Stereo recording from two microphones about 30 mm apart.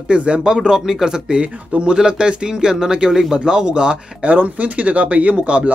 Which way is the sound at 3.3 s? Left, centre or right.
Right.